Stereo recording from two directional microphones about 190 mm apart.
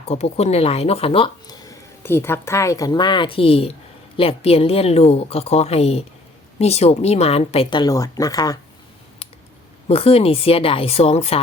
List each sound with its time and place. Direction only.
0.0 s a woman's voice: 35° left (ahead or behind); by 8.5 s 20° left (ahead or behind)
9.9 s a woman's voice: 30° left (ahead or behind)